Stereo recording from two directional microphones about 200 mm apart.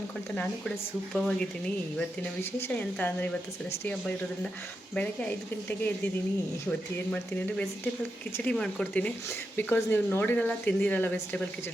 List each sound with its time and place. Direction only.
0.3 s speech: 5° left (ahead or behind)
4.9 s speech: 10° left (ahead or behind)